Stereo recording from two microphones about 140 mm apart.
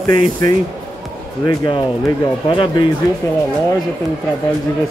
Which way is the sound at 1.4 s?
25° left (ahead or behind).